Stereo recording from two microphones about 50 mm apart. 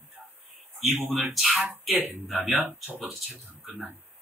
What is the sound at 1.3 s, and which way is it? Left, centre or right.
Speech, centre.